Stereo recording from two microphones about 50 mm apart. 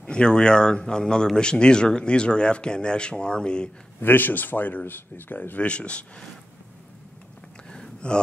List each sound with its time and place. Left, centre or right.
0.0 s speech: centre
4.0 s a man's voice: left
5.6 s speech: left
7.7 s a sound: centre